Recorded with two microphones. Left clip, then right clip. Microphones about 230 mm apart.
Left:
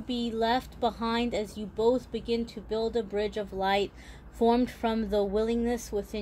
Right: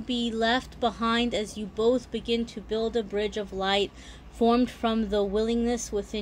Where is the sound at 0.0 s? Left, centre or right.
Centre.